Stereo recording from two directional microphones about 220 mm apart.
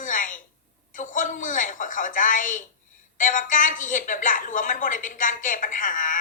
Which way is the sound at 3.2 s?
35° left (ahead or behind).